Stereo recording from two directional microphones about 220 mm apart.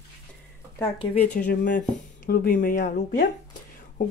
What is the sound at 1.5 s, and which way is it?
Speech, 40° left (ahead or behind).